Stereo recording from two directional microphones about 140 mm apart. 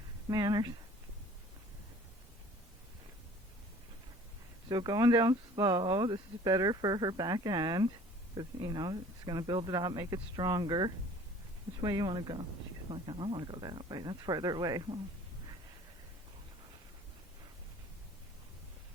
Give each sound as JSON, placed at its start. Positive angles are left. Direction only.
{"t": 0.3, "sound": "speech", "side_deg": -25}
{"t": 4.7, "sound": "speech", "side_deg": -30}